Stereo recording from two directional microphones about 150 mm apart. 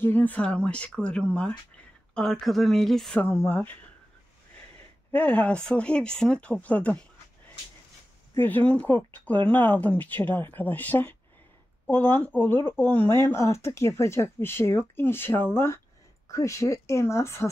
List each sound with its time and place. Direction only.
0.0 s speech: 10° left (ahead or behind)
5.1 s speech: 10° left (ahead or behind)
8.4 s speech: 10° left (ahead or behind)